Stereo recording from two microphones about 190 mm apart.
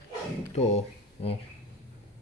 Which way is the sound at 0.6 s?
30° left (ahead or behind).